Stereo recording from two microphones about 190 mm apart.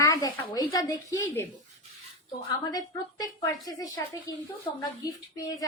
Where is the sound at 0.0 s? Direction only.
20° left (ahead or behind).